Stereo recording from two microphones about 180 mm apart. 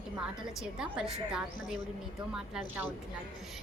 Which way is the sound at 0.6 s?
5° right (ahead or behind).